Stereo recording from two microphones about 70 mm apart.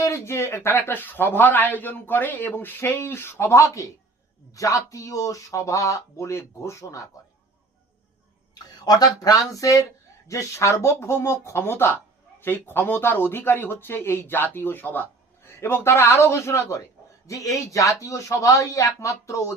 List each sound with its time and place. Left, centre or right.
0.0 s speech: left
8.5 s speech: left